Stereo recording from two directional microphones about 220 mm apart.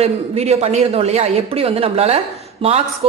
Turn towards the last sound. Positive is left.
turn(degrees=-25)  # may be behind; listen again after turning